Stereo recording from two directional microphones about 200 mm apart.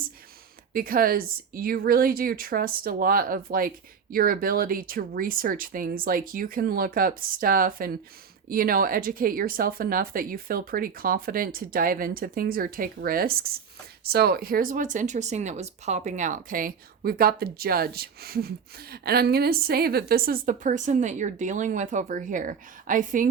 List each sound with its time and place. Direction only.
0.7 s speech: 45° right (ahead or behind)